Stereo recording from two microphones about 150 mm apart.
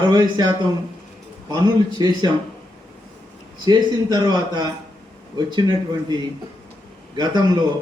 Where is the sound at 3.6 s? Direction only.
30° right (ahead or behind).